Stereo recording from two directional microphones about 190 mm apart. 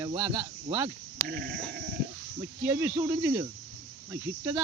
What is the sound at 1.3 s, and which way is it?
Sheep, 55° right (ahead or behind).